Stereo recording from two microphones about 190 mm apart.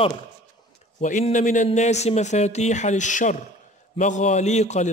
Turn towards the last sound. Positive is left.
turn(degrees=35)  # may be behind; listen again after turning